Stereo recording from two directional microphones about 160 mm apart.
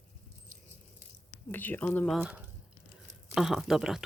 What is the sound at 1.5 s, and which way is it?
Speech, 10° left (ahead or behind).